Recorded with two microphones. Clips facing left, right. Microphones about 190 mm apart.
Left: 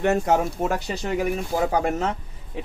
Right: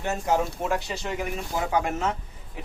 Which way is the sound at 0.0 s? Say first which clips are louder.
Left 6 dB; 65° left (ahead or behind).